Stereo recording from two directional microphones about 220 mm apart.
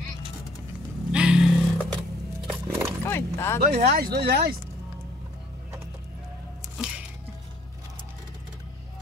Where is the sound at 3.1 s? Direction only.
10° left (ahead or behind).